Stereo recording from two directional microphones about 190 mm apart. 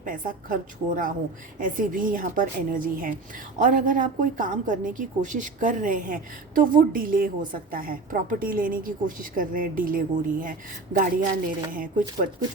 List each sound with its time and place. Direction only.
0.0 s a woman's voice: 45° right (ahead or behind)